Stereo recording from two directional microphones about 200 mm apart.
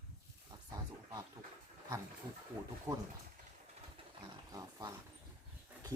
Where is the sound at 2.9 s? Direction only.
15° right (ahead or behind).